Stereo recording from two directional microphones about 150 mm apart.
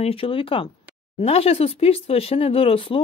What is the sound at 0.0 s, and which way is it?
Speech, 40° left (ahead or behind).